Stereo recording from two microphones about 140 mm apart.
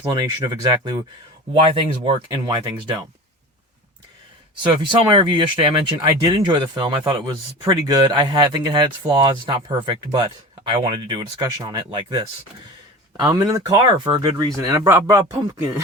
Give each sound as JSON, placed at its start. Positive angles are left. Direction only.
{"t": 0.0, "sound": "speech", "side_deg": -25}
{"t": 4.9, "sound": "speech", "side_deg": -35}